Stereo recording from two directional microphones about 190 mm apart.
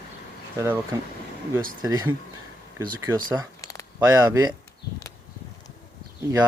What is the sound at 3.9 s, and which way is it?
Speech, 20° right (ahead or behind).